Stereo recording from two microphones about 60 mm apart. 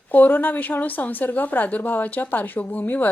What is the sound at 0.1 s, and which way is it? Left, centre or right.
A woman's voice, left.